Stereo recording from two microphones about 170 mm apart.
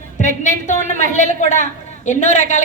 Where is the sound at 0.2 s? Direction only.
45° left (ahead or behind).